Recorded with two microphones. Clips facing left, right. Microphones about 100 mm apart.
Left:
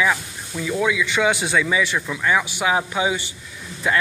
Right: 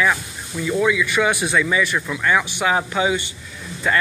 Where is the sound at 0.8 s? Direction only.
20° left (ahead or behind).